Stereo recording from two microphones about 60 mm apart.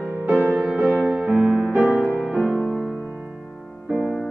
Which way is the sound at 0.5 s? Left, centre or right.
Centre.